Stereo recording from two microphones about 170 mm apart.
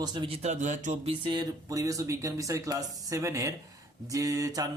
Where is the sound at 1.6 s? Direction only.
20° right (ahead or behind).